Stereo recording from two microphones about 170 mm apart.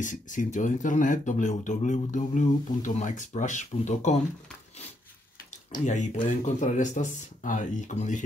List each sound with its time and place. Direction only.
0.0 s speech: 50° left (ahead or behind)
5.7 s speech: 45° left (ahead or behind)